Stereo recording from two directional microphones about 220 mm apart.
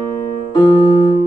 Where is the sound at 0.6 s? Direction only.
25° left (ahead or behind).